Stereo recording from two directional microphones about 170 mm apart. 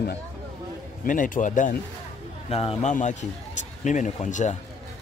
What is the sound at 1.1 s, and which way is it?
Speech, 50° left (ahead or behind).